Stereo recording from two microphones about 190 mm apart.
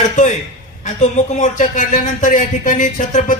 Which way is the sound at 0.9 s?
40° left (ahead or behind).